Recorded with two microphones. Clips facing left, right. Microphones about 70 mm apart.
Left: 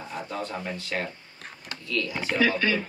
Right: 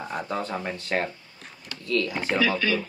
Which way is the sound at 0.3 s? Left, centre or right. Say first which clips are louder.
Right 2 dB; right.